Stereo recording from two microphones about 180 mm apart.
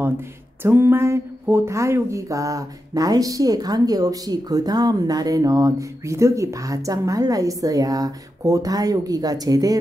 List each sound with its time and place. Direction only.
0.6 s speech: 10° right (ahead or behind)